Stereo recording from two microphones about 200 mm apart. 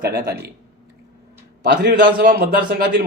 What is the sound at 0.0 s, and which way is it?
Speech, 50° right (ahead or behind).